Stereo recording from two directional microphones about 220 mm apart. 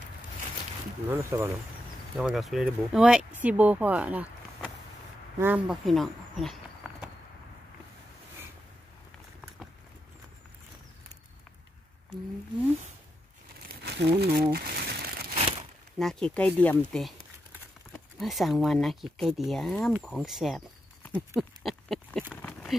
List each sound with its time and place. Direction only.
1.1 s speech: 10° right (ahead or behind)
13.8 s crumpling: 50° right (ahead or behind)
16.0 s speech: centre (ahead or behind)
18.2 s speech: centre (ahead or behind)
21.4 s pig: centre (ahead or behind)
22.3 s a sound: 5° left (ahead or behind)